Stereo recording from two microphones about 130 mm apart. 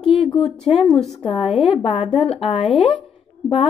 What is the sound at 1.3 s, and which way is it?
A woman's voice, 45° left (ahead or behind).